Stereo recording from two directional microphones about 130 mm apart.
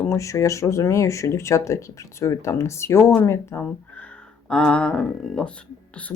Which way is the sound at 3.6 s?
10° left (ahead or behind).